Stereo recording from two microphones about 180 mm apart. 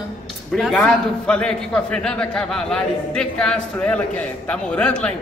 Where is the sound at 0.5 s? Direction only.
5° left (ahead or behind).